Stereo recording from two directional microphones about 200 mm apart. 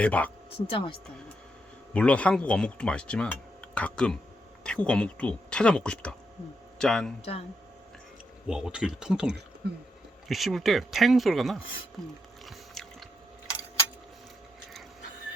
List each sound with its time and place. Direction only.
0.0 s speech: 5° left (ahead or behind)
0.5 s speech: 25° left (ahead or behind)
1.9 s speech: 5° left (ahead or behind)
8.4 s speech: 5° right (ahead or behind)
10.2 s speech: centre (ahead or behind)
12.5 s biting: centre (ahead or behind)